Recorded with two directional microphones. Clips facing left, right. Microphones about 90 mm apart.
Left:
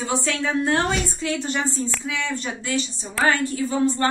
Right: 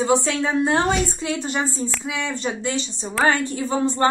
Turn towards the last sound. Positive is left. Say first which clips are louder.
# right 1 dB
turn(degrees=-30)  # may be behind; listen again after turning